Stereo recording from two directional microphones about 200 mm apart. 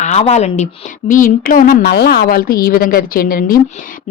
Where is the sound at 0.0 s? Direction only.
35° left (ahead or behind).